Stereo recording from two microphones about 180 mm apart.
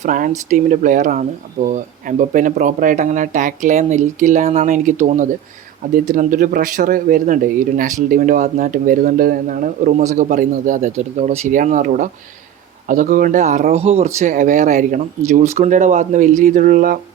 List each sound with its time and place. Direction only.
0.0 s speech: 45° right (ahead or behind)